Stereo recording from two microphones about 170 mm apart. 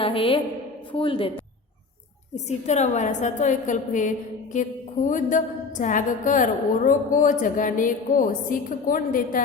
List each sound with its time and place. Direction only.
0.0 s speech: 35° left (ahead or behind)
2.3 s a woman's voice: 40° left (ahead or behind)